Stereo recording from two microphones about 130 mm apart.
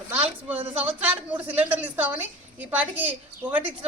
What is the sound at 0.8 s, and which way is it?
A woman's voice, 10° right (ahead or behind).